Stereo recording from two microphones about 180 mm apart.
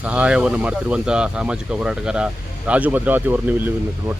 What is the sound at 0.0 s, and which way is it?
Speech, 5° right (ahead or behind).